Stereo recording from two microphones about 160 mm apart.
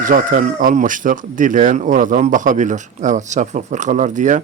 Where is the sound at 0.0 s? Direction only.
55° right (ahead or behind).